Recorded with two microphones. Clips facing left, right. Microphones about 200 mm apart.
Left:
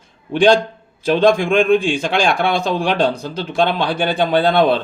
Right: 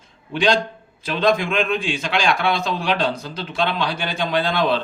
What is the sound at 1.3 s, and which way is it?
Speech, 50° left (ahead or behind).